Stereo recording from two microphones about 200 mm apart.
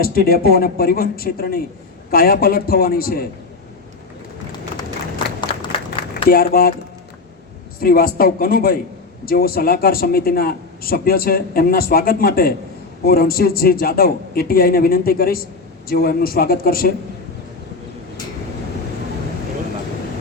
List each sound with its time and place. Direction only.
0.0 s a man's voice: 45° left (ahead or behind)
6.2 s a man's voice: 50° left (ahead or behind)
7.8 s a man's voice: 50° left (ahead or behind)